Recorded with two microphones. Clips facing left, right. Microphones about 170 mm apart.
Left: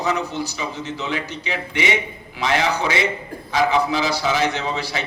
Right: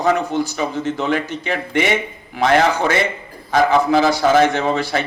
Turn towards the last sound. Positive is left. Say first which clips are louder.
# right 6 dB
turn(degrees=-50)  # may be behind; listen again after turning